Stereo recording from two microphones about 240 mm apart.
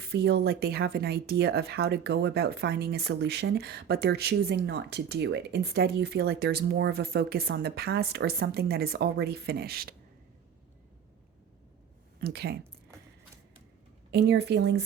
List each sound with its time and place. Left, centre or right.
0.0 s speech: right
12.2 s speech: right
14.1 s speech: right